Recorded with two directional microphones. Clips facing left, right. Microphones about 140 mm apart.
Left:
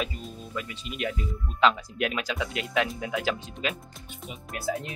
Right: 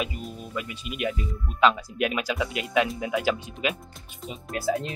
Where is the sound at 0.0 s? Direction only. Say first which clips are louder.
Right 2 dB; 10° right (ahead or behind).